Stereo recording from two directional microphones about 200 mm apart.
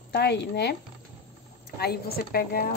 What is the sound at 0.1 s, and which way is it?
Speech, 55° left (ahead or behind).